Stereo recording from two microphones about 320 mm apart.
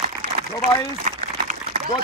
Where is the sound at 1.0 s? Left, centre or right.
Right.